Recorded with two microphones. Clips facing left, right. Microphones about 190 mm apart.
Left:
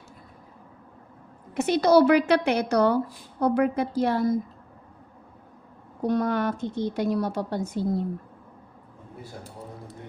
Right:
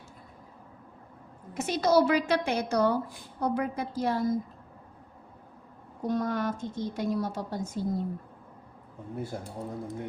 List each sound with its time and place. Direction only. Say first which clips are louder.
1.5 s a woman's voice: left 5 dB; 65° left (ahead or behind)
6.0 s a woman's voice: left 5 dB; 70° left (ahead or behind)